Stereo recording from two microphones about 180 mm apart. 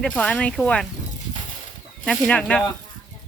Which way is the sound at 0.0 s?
5° left (ahead or behind).